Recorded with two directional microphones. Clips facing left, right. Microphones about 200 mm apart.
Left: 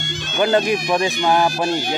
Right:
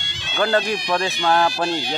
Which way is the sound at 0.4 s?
20° left (ahead or behind).